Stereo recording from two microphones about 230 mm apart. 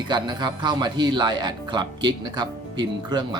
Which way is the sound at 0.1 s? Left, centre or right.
Centre.